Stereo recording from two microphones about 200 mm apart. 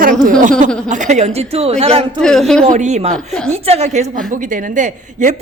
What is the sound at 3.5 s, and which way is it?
A woman's voice, 30° right (ahead or behind).